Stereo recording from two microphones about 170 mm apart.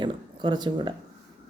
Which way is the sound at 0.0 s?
25° right (ahead or behind).